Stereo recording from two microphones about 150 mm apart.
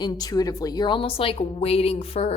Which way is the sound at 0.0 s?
25° left (ahead or behind).